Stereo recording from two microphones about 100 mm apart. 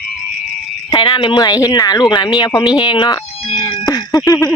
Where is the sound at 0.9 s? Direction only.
55° left (ahead or behind); by 4.5 s 35° left (ahead or behind).